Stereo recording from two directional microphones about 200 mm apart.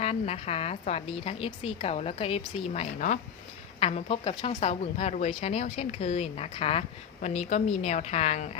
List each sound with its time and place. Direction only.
0.0 s speech: 30° left (ahead or behind)